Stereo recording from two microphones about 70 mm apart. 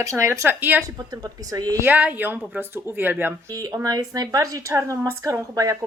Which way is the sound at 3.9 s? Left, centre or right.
Right.